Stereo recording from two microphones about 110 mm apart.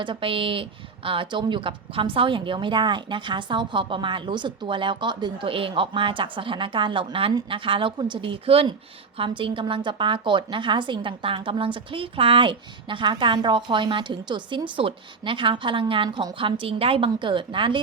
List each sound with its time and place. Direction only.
0.0 s a woman's voice: 50° right (ahead or behind)